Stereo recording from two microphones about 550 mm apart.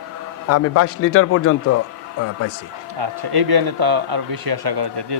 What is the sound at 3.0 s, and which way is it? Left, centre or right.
Speech, right.